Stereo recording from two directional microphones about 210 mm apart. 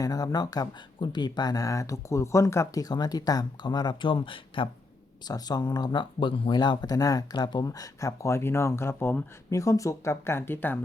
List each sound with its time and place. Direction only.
0.0 s speech: 15° left (ahead or behind)